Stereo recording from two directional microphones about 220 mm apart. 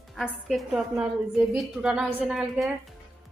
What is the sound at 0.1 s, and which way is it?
A woman's voice, centre (ahead or behind).